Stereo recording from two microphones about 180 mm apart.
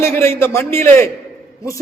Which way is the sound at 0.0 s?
15° left (ahead or behind).